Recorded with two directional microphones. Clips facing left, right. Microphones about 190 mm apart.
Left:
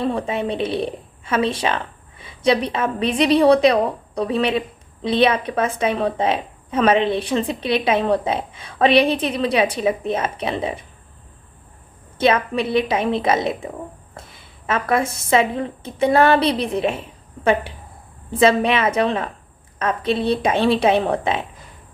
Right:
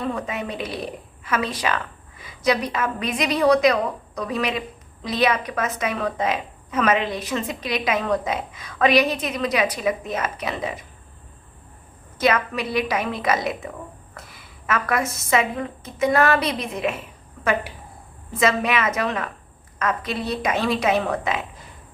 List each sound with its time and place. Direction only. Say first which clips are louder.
0.0 s a woman's voice: left 5 dB; 30° left (ahead or behind)
12.1 s a woman's voice: left 3 dB; 30° left (ahead or behind)